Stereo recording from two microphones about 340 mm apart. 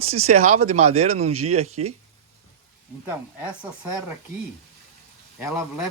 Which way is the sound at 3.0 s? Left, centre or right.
Centre.